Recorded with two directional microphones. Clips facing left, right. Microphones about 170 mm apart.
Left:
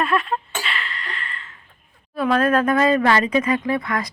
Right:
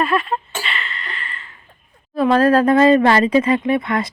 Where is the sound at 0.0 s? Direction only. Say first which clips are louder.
Right 2 dB; centre (ahead or behind).